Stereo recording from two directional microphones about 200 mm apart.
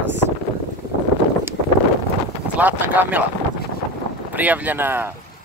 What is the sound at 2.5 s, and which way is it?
Speech, 5° right (ahead or behind).